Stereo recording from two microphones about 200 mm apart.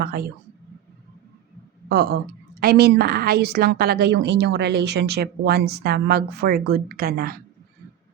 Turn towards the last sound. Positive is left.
turn(degrees=-50)  # may be behind; listen again after turning